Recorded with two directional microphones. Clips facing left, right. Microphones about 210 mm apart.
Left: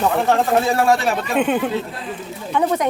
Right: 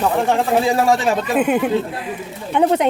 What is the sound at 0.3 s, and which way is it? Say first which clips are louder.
Speech: even; 10° right (ahead or behind).